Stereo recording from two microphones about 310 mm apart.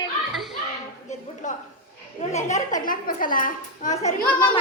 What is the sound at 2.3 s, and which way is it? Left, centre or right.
A woman's voice, left.